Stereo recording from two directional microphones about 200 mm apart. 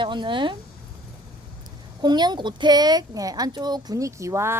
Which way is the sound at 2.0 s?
20° right (ahead or behind).